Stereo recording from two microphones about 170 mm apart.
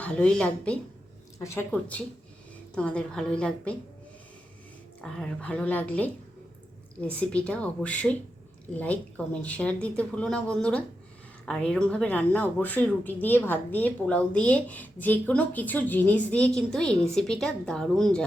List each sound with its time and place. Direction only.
0.0 s a woman's voice: 5° left (ahead or behind)
4.9 s a woman's voice: 5° left (ahead or behind)